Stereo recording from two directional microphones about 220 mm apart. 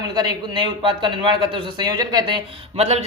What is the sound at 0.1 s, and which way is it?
A man's voice, 20° right (ahead or behind).